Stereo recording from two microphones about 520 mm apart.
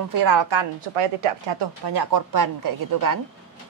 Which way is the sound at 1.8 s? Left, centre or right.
Right.